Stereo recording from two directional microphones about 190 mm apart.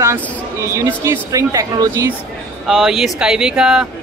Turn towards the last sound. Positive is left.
turn(degrees=-5)  # may be behind; listen again after turning